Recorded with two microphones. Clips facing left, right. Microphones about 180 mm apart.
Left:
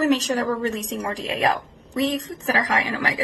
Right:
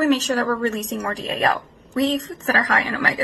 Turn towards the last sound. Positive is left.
turn(degrees=15)  # may be behind; listen again after turning